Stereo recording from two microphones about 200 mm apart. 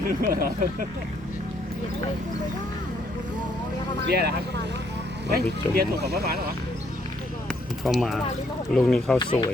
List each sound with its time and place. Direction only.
0.1 s speech: 45° right (ahead or behind)
4.0 s speech: 50° right (ahead or behind)
5.3 s speech: 50° right (ahead or behind)
7.9 s speech: centre (ahead or behind)
9.1 s speech: 25° left (ahead or behind)